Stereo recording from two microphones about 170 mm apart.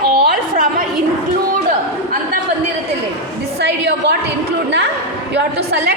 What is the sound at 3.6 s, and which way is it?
Speech, 80° right.